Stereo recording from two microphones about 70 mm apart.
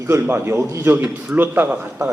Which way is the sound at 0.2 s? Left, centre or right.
Right.